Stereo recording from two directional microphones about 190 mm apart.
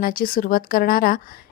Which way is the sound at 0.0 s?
50° left (ahead or behind).